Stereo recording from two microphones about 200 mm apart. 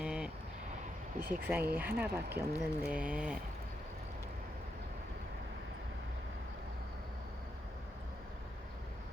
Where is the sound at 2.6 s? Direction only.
5° right (ahead or behind).